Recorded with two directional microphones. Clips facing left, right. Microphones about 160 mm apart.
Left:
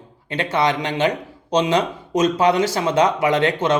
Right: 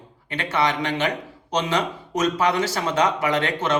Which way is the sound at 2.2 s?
30° left (ahead or behind).